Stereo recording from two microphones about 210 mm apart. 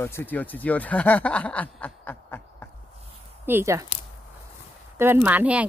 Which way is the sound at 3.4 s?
10° right (ahead or behind).